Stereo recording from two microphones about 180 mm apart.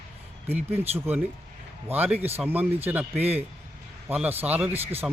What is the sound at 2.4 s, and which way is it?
Speech, 10° right (ahead or behind).